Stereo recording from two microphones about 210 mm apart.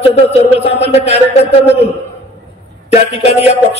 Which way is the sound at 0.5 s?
30° left (ahead or behind).